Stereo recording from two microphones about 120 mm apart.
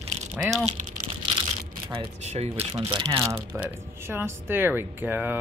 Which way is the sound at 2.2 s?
65° right (ahead or behind).